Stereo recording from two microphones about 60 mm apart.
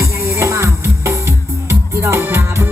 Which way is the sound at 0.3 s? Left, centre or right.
Right.